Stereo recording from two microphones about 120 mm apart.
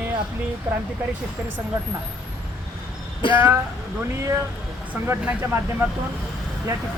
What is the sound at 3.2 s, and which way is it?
Speech, 45° left (ahead or behind).